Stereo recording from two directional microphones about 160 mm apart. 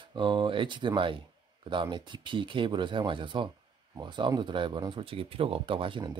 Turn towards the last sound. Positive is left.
turn(degrees=-30)  # may be behind; listen again after turning